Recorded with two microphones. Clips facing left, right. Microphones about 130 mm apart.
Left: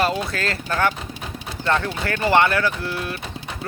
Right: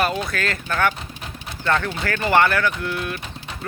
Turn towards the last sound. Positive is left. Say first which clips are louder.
# even
turn(degrees=30)  # may be behind; listen again after turning